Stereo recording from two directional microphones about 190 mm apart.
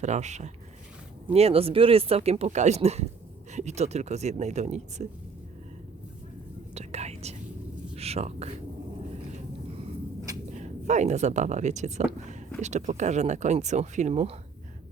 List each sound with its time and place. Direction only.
0.0 s speech: 35° right (ahead or behind)
6.7 s whispering: 35° right (ahead or behind)
7.9 s a sound: 35° right (ahead or behind)
10.5 s speech: 40° right (ahead or behind)